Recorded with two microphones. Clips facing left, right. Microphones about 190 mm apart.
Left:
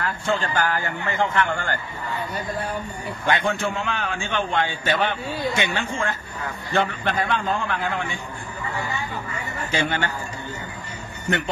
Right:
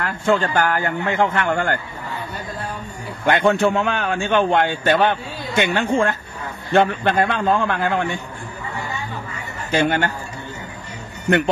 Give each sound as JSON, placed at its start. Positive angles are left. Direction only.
{"t": 0.0, "sound": "a man's voice", "side_deg": -55}
{"t": 3.3, "sound": "a man's voice", "side_deg": -60}
{"t": 9.7, "sound": "speech", "side_deg": -50}
{"t": 11.2, "sound": "a man's voice", "side_deg": -55}